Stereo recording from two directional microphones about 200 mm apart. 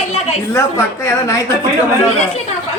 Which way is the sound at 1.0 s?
15° left (ahead or behind).